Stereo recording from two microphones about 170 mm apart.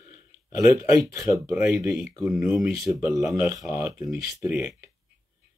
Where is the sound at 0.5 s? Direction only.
20° right (ahead or behind).